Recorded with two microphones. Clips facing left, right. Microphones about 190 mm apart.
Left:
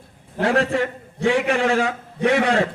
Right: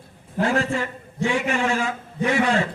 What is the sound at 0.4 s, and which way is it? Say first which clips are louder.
A man's voice: left 4 dB; 60° left (ahead or behind).